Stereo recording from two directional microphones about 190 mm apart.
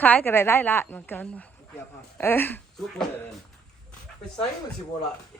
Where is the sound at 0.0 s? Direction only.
10° left (ahead or behind).